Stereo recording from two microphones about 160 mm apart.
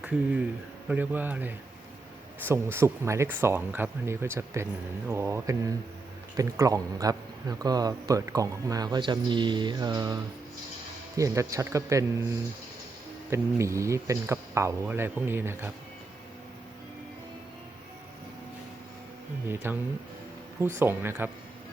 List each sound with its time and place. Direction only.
0.0 s a man's voice: 10° right (ahead or behind)
13.3 s speech: 15° right (ahead or behind)
19.5 s speech: 15° right (ahead or behind)